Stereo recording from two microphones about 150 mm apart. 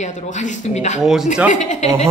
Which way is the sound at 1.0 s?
Centre (ahead or behind).